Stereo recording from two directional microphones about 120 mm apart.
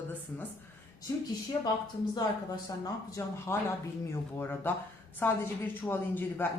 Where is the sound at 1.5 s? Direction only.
30° left (ahead or behind).